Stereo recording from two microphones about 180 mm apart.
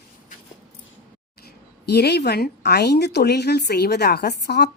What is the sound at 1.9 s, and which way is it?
Speech, 65° left (ahead or behind).